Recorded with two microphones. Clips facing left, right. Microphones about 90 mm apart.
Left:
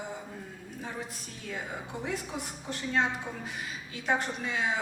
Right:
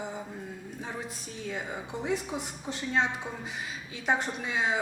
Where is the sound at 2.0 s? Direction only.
15° right (ahead or behind).